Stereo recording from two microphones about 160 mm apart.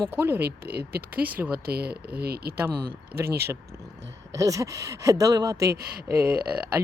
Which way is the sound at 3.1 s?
15° right (ahead or behind).